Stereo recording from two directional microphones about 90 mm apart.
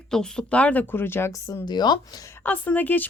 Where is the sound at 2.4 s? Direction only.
20° left (ahead or behind).